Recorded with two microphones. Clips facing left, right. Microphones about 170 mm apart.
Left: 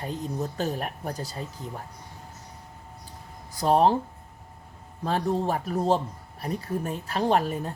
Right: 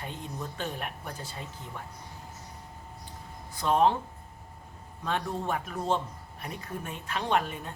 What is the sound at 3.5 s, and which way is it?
Speech, 35° left (ahead or behind).